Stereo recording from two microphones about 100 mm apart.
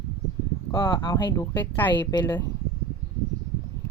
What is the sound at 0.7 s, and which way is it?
Speech, 50° left (ahead or behind).